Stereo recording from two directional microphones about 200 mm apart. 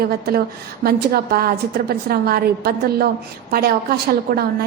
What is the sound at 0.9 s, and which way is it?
A woman's voice, 50° right (ahead or behind).